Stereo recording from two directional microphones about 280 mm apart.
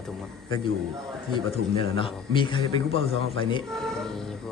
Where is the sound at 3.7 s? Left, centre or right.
Centre.